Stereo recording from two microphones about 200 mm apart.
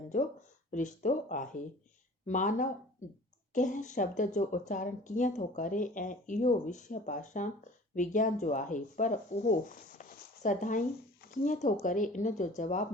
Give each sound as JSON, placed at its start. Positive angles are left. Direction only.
{"t": 0.7, "sound": "a woman's voice", "side_deg": 40}